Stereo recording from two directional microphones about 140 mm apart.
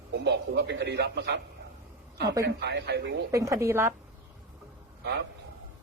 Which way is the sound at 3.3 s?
20° right (ahead or behind).